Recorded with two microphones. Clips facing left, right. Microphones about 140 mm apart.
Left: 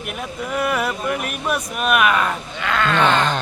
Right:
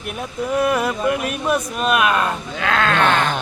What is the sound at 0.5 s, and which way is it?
Speech, 25° right (ahead or behind).